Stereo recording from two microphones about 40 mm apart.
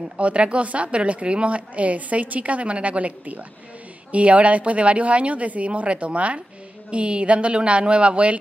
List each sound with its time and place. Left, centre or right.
0.2 s a woman's voice: right